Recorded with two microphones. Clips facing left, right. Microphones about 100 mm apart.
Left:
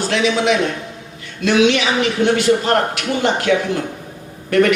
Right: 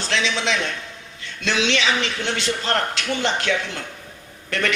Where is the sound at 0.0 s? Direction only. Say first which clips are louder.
Left 7 dB; 15° left (ahead or behind).